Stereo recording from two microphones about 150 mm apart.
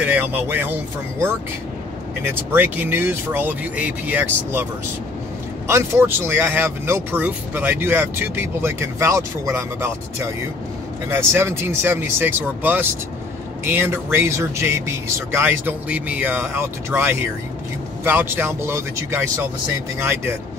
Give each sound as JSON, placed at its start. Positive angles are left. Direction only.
{"t": 0.0, "sound": "speech", "side_deg": -10}
{"t": 5.7, "sound": "speech", "side_deg": -15}